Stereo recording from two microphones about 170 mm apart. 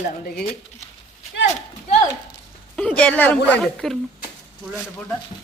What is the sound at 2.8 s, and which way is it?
A woman's voice, 5° left (ahead or behind).